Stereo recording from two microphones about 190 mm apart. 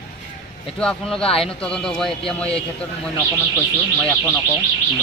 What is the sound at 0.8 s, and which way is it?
Speech, 5° left (ahead or behind).